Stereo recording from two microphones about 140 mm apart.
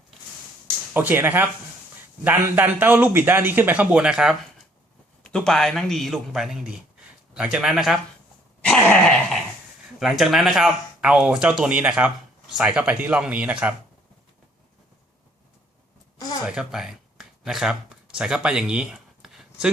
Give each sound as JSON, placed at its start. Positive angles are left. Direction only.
{"t": 0.9, "sound": "a man's voice", "side_deg": -15}
{"t": 5.2, "sound": "a man's voice", "side_deg": 5}
{"t": 8.6, "sound": "a sound", "side_deg": 10}
{"t": 10.0, "sound": "a man's voice", "side_deg": 0}
{"t": 16.1, "sound": "a sound", "side_deg": 25}
{"t": 16.5, "sound": "speech", "side_deg": -5}